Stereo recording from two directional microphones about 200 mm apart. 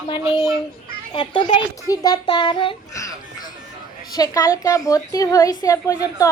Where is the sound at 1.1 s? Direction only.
25° left (ahead or behind).